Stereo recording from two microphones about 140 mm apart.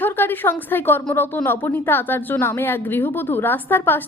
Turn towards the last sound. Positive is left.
turn(degrees=15)  # may be behind; listen again after turning